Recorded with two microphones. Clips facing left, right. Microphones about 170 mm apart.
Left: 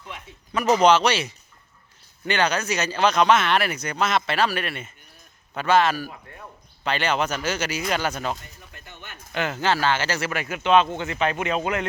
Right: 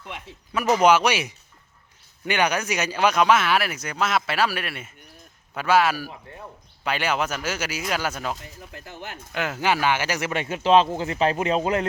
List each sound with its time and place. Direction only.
0.5 s speech: 10° right (ahead or behind)
6.1 s speech: 25° right (ahead or behind)
6.8 s speech: 10° right (ahead or behind); by 11.9 s 35° right (ahead or behind)